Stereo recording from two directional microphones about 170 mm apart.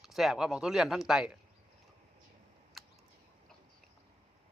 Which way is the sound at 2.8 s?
Centre (ahead or behind).